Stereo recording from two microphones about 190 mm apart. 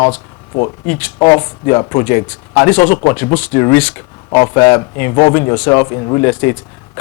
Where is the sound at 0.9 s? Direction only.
20° left (ahead or behind).